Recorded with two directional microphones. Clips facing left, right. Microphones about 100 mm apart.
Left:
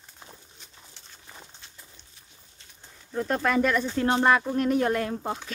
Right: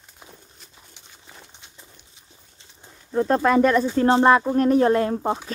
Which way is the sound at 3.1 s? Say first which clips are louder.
Right 7 dB; 35° right (ahead or behind).